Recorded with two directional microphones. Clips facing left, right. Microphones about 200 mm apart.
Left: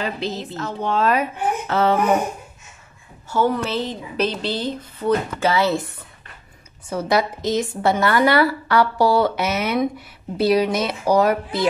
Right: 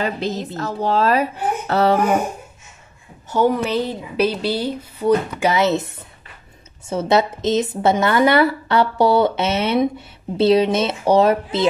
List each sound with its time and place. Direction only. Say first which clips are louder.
0.0 s a woman's voice: right 3 dB; 45° right (ahead or behind)
3.3 s a woman's voice: right 3 dB; 15° right (ahead or behind)